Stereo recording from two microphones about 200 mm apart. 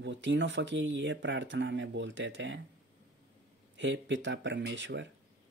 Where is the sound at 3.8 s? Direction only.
65° right (ahead or behind).